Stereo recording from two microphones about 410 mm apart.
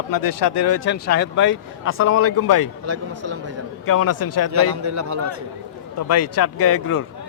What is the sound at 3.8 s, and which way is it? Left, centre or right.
Speech, left.